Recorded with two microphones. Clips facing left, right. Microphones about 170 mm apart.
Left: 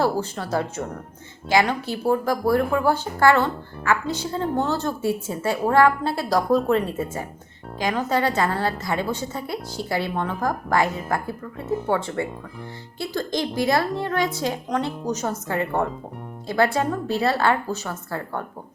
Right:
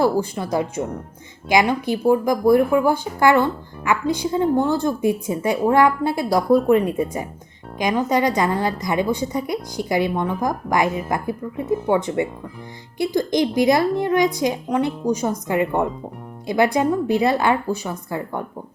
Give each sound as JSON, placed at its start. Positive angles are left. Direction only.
{"t": 0.0, "sound": "speech", "side_deg": -15}